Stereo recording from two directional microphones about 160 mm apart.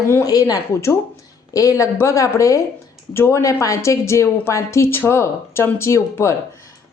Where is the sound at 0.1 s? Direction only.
20° left (ahead or behind).